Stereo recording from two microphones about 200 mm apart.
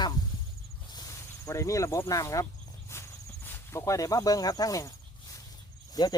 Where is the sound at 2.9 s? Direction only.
15° left (ahead or behind).